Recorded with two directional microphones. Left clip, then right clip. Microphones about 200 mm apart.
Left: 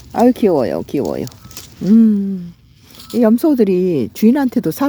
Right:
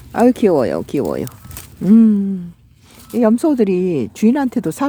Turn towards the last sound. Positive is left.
turn(degrees=0)  # may be behind; listen again after turning